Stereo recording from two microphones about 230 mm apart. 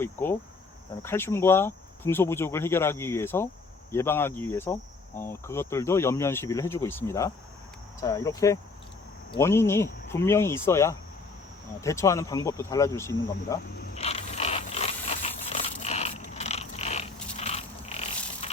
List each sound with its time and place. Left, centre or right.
0.0 s cricket: centre
13.9 s mechanisms: left
17.3 s zipper: left
18.4 s music: left